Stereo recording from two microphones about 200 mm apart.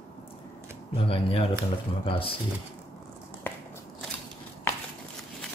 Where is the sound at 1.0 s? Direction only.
30° left (ahead or behind).